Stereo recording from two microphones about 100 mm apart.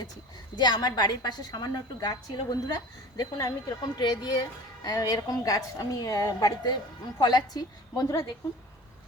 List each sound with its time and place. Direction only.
0.5 s a woman's voice: 45° left (ahead or behind)